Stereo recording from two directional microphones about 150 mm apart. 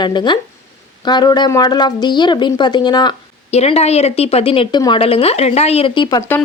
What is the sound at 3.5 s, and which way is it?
Speech, 45° left (ahead or behind).